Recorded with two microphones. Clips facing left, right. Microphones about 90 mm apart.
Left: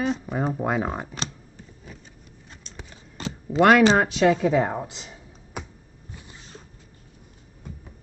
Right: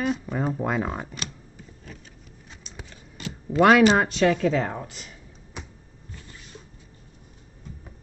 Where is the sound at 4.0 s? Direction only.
5° left (ahead or behind); by 5.1 s 20° left (ahead or behind).